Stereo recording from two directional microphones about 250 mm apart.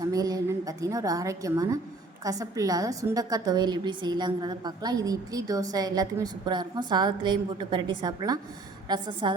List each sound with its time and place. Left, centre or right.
0.0 s a woman's voice: centre